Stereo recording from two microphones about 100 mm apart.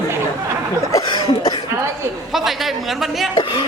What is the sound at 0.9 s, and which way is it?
Cough, 40° left (ahead or behind).